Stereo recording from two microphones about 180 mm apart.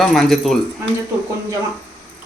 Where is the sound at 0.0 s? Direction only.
Centre (ahead or behind).